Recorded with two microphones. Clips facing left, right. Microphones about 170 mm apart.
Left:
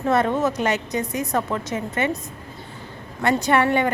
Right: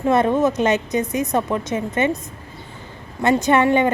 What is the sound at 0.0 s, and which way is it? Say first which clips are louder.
A woman's voice: right 3 dB; 15° right (ahead or behind).